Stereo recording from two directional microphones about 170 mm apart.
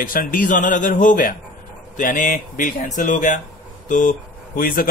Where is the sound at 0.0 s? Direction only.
55° left (ahead or behind).